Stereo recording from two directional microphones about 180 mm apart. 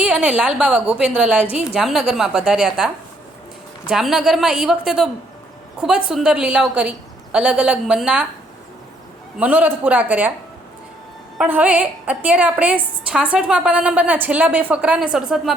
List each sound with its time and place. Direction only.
0.0 s a woman's voice: 5° right (ahead or behind)
9.4 s a woman's voice: 10° right (ahead or behind)
11.3 s a woman's voice: 10° right (ahead or behind)